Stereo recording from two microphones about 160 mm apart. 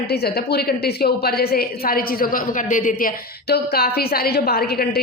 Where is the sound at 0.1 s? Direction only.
85° left; by 3.1 s 55° left (ahead or behind).